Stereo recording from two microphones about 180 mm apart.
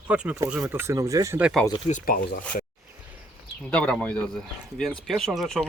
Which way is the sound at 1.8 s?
45° left (ahead or behind).